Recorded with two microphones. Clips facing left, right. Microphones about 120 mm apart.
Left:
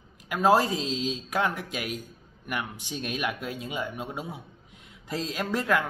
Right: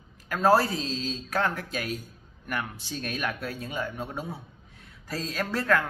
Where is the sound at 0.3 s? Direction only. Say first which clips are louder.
Even; 15° left (ahead or behind).